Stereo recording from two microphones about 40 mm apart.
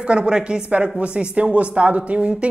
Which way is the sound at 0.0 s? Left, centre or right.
Right.